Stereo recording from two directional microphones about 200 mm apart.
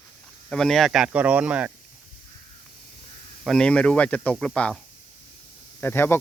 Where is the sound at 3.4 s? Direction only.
5° left (ahead or behind).